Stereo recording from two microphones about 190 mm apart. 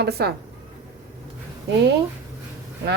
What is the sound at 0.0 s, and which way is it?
Speech, 60° right (ahead or behind).